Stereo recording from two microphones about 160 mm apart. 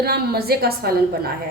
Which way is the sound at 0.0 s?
75° right (ahead or behind).